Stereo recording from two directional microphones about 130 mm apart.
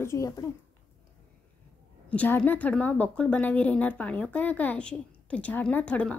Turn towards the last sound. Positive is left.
turn(degrees=10)  # may be behind; listen again after turning